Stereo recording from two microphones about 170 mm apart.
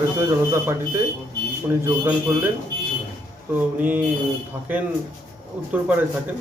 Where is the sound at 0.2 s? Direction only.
15° right (ahead or behind).